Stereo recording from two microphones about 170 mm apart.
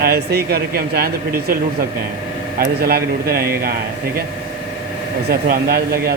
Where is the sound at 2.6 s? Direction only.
65° right (ahead or behind).